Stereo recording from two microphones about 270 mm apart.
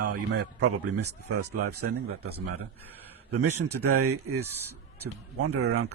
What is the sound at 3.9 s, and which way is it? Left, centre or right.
A man's voice, right.